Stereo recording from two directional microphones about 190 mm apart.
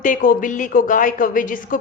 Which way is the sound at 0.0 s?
45° left (ahead or behind).